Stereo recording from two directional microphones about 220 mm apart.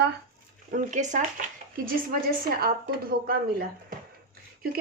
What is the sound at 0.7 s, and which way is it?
A woman's voice, 35° right (ahead or behind).